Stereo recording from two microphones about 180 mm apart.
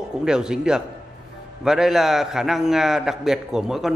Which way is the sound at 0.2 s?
5° right (ahead or behind).